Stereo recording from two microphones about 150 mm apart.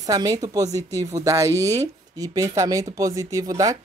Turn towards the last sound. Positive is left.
turn(degrees=-25)  # may be behind; listen again after turning